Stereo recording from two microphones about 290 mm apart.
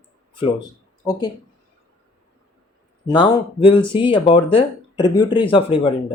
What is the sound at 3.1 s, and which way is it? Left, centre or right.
Speech, centre.